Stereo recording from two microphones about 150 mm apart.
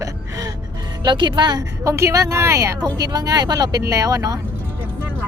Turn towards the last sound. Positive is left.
turn(degrees=-20)  # may be behind; listen again after turning